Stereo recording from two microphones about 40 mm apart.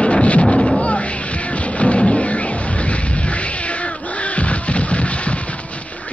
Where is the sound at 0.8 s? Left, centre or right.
Left.